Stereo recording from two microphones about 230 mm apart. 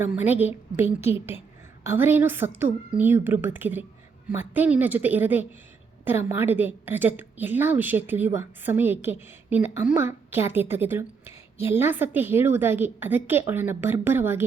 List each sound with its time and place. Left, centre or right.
0.0 s a woman's voice: centre